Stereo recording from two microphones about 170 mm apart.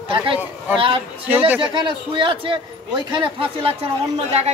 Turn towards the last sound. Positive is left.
turn(degrees=-35)  # may be behind; listen again after turning